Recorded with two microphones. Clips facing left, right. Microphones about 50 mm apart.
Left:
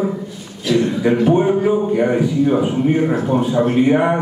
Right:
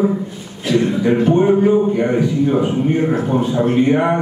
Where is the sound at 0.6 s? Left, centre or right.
Right.